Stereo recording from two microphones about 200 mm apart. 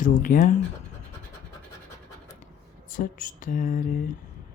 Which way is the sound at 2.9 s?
45° left (ahead or behind).